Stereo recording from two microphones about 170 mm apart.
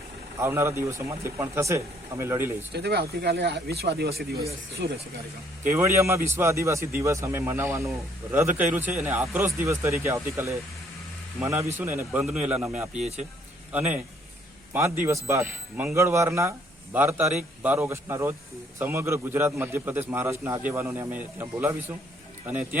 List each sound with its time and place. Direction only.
0.3 s a man's voice: 15° right (ahead or behind)
2.7 s speech: 75° right (ahead or behind)
5.7 s a man's voice: 15° right (ahead or behind)